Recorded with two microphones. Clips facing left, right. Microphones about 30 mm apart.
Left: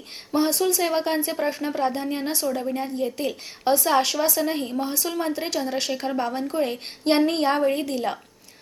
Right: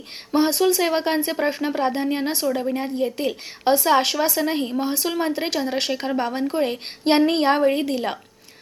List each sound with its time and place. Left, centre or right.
0.3 s speech: right
4.8 s speech: right